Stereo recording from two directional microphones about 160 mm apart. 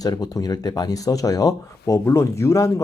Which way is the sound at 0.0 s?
25° left (ahead or behind).